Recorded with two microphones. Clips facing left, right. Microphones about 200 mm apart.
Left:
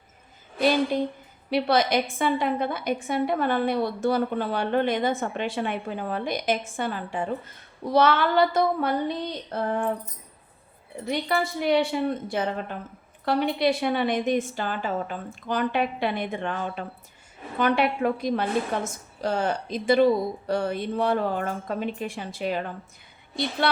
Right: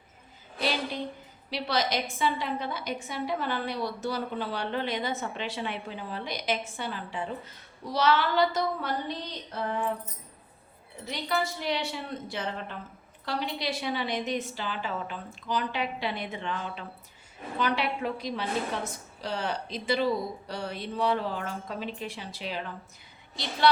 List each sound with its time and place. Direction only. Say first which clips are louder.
0.6 s a woman's voice: left 9 dB; 50° left (ahead or behind)
7.9 s a sound: left 5 dB; 55° left (ahead or behind)
11.0 s a woman's voice: left 5 dB; 55° left (ahead or behind)